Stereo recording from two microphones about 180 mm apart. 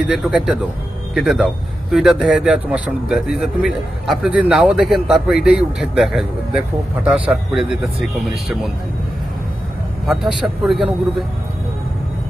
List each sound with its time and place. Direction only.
0.2 s a man's voice: 5° right (ahead or behind)
10.1 s speech: centre (ahead or behind)